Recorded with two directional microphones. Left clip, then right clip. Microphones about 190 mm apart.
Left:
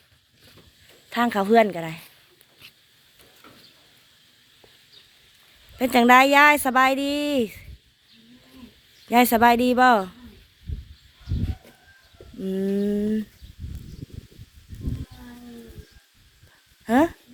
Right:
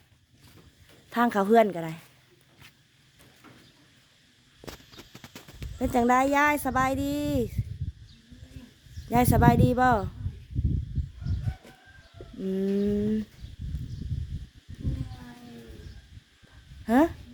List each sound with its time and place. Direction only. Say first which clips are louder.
1.1 s a woman's voice: left 3 dB; 20° right (ahead or behind)
5.8 s speech: left 8 dB; centre (ahead or behind)
9.0 s speech: left 6 dB; centre (ahead or behind)
12.4 s speech: left 3 dB; 5° right (ahead or behind)
16.8 s speech: left 3 dB; 5° right (ahead or behind)